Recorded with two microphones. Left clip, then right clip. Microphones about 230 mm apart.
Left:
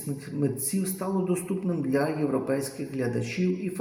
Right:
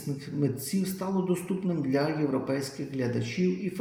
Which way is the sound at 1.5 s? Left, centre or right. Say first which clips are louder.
Left 1 dB; centre.